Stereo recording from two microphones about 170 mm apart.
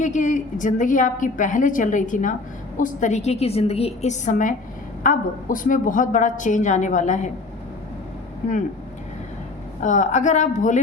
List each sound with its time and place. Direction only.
0.0 s a woman's voice: 45° left (ahead or behind)
9.8 s a woman's voice: 45° left (ahead or behind)